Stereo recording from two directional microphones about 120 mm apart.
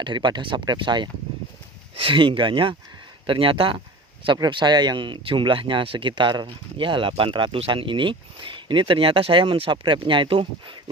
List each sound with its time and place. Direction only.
0.0 s speech: 40° right (ahead or behind)